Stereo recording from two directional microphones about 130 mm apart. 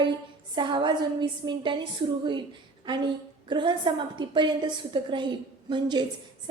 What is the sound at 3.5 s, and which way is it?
A woman's voice, 35° right (ahead or behind).